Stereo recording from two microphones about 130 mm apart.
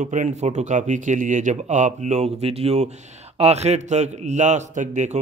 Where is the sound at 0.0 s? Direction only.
70° right (ahead or behind).